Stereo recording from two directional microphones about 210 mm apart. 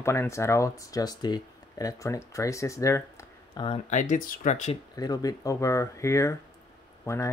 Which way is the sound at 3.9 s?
35° left (ahead or behind).